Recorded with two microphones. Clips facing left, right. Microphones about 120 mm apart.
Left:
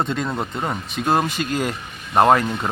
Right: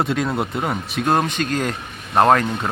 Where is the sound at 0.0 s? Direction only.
5° right (ahead or behind).